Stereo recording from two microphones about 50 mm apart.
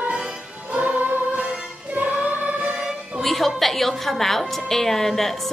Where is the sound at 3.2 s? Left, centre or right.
Centre.